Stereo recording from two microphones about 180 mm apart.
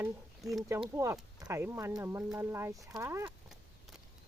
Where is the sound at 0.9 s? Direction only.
15° right (ahead or behind).